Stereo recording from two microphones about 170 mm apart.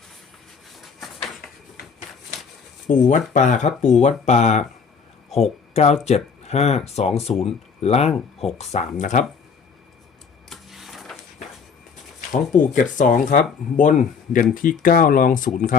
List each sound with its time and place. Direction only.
0.8 s a sound: centre (ahead or behind)
2.9 s speech: 50° left (ahead or behind)
10.5 s printer: centre (ahead or behind)
12.3 s speech: 50° left (ahead or behind)